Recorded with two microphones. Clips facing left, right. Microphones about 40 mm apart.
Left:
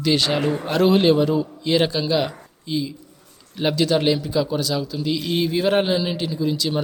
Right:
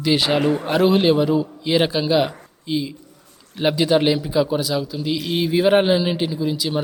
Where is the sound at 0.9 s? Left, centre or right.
Centre.